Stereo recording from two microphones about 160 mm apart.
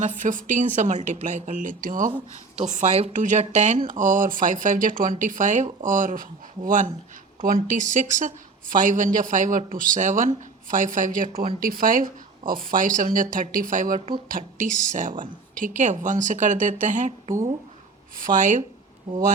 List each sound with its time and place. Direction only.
0.0 s speech: 50° right (ahead or behind)